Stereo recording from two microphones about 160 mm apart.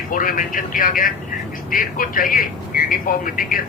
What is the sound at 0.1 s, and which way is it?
A man's voice, 60° left (ahead or behind).